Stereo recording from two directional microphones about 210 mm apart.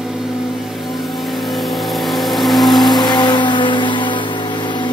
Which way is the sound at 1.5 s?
Centre (ahead or behind).